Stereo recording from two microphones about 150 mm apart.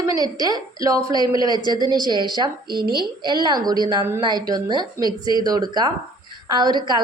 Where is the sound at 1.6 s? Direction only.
25° left (ahead or behind).